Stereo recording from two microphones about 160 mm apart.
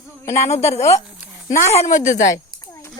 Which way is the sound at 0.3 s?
45° left (ahead or behind).